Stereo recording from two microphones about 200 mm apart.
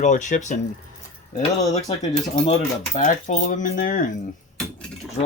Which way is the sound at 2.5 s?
40° left (ahead or behind).